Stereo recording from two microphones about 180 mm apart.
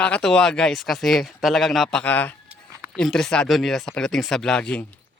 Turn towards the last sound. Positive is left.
turn(degrees=5)  # may be behind; listen again after turning